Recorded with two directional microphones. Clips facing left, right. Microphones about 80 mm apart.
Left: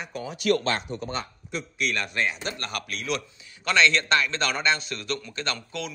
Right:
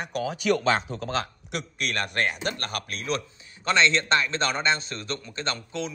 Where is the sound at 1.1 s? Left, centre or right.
Right.